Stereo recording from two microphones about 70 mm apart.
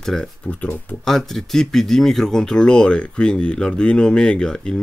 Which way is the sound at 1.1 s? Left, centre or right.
Centre.